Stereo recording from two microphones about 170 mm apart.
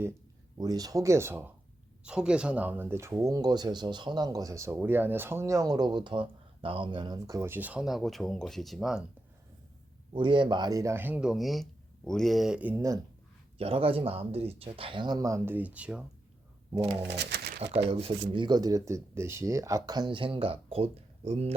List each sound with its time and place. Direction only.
0.6 s speech: 20° right (ahead or behind); by 9.0 s 5° right (ahead or behind)
10.2 s speech: 30° right (ahead or behind)
13.6 s speech: 35° right (ahead or behind); by 16.0 s 5° right (ahead or behind)
17.1 s pigeon: 85° right
17.6 s speech: 35° right (ahead or behind)